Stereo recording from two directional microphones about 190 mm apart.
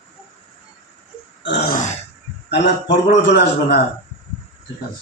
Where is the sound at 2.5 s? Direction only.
70° left (ahead or behind).